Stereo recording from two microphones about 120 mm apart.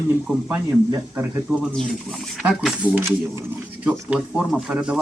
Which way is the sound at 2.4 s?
5° right (ahead or behind).